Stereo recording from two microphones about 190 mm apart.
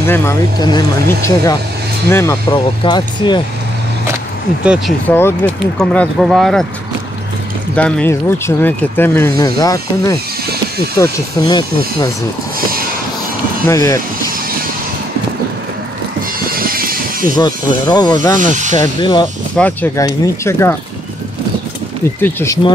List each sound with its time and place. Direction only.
0.0 s speech: 15° left (ahead or behind)
2.5 s speech: 25° left (ahead or behind)
5.0 s speech: 10° left (ahead or behind)
7.7 s speech: 10° left (ahead or behind)
12.5 s a sound: 50° right (ahead or behind)
13.7 s speech: 15° left (ahead or behind)
16.5 s a sound: 50° right (ahead or behind)
17.4 s speech: 20° left (ahead or behind)
18.4 s speech: 40° right (ahead or behind)
18.8 s speech: 25° left (ahead or behind)
19.5 s speech: 10° left (ahead or behind)
22.2 s speech: 15° left (ahead or behind)